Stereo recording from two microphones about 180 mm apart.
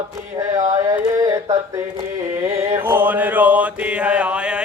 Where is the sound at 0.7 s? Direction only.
20° right (ahead or behind).